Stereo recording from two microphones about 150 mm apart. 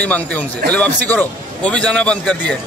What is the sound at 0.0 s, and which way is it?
A man's voice, 10° left (ahead or behind).